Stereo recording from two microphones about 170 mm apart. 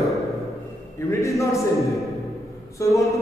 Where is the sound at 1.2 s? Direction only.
15° left (ahead or behind).